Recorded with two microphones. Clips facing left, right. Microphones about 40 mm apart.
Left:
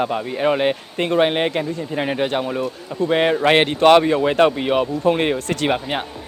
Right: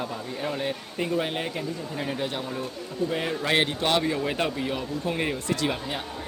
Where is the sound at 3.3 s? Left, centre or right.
Left.